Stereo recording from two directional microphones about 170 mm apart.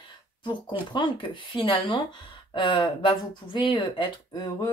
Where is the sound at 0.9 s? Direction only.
30° left (ahead or behind).